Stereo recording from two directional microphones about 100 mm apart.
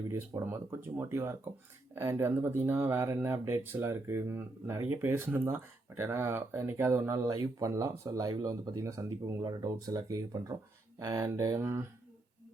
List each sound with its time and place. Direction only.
0.1 s speech: 25° right (ahead or behind)
7.1 s speech: 40° right (ahead or behind)
9.4 s speech: 45° right (ahead or behind); by 11.9 s 25° right (ahead or behind)